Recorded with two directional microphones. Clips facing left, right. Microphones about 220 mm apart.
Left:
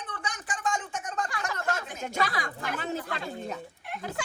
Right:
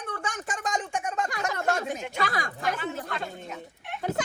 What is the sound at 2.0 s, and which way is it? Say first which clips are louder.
Speech: left 1 dB; 45° left (ahead or behind).